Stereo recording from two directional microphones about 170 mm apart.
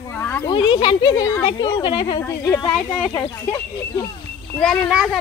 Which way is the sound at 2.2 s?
15° left (ahead or behind).